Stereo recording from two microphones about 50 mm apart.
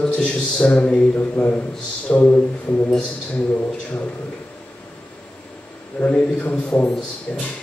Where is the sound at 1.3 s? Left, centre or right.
Left.